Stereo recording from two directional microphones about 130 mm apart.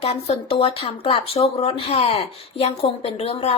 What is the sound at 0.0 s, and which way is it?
Speech, 50° left (ahead or behind).